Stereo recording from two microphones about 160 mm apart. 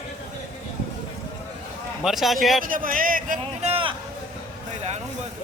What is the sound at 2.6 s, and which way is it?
Speech, 60° right (ahead or behind).